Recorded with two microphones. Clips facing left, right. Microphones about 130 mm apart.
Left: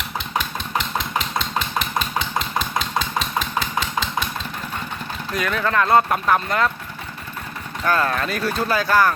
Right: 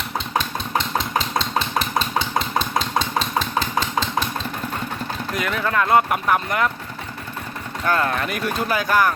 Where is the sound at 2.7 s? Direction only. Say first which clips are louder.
Right 2 dB; 35° right (ahead or behind).